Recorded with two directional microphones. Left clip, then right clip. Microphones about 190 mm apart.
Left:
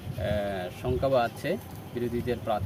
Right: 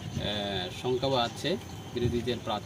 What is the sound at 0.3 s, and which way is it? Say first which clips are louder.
Speech: left 2 dB; 5° left (ahead or behind).